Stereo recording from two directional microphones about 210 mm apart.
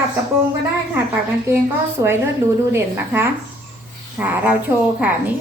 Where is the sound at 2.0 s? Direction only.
15° right (ahead or behind).